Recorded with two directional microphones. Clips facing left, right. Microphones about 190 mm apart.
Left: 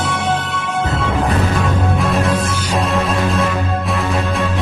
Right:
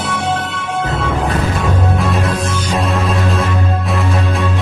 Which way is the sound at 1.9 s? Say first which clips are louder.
Left 1 dB; centre (ahead or behind).